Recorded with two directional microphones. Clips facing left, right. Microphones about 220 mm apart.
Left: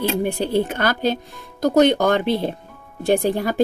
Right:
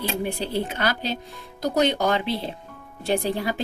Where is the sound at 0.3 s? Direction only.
50° left (ahead or behind).